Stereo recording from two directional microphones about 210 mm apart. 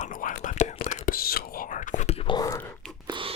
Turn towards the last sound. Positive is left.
turn(degrees=-25)  # may be behind; listen again after turning